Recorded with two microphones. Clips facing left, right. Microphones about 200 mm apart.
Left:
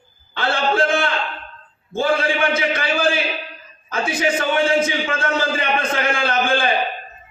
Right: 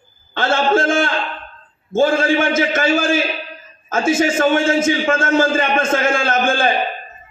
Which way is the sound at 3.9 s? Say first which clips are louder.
Right 5 dB; 45° right (ahead or behind).